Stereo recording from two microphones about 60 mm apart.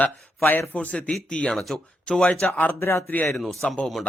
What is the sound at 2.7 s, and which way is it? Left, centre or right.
Speech, left.